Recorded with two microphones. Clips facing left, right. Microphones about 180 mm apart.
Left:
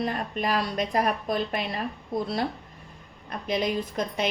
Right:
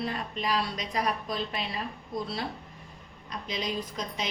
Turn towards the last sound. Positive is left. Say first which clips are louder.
# left 7 dB
turn(degrees=55)  # may be behind; listen again after turning